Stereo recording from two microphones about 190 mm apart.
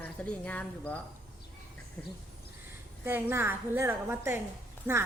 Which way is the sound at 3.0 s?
10° right (ahead or behind).